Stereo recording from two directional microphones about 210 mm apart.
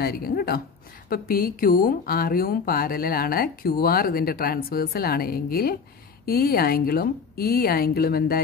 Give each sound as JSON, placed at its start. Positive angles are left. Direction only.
{"t": 0.0, "sound": "speech", "side_deg": 45}